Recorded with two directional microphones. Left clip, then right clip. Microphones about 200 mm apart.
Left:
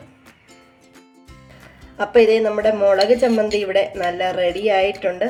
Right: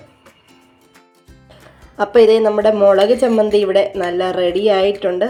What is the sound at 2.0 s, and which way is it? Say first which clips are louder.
Speech: right 3 dB; 25° right (ahead or behind).